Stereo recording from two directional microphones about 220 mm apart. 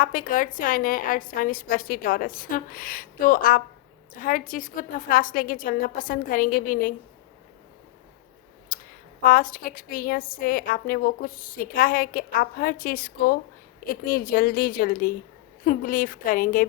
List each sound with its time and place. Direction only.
0.0 s a woman's voice: 40° left (ahead or behind)
8.7 s a sound: 40° left (ahead or behind)
9.2 s a woman's voice: 40° left (ahead or behind)